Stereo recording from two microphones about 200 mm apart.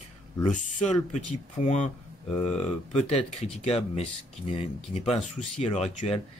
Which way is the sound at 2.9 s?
30° left (ahead or behind).